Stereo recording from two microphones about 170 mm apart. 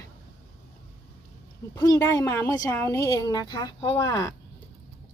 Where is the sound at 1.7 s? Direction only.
15° left (ahead or behind).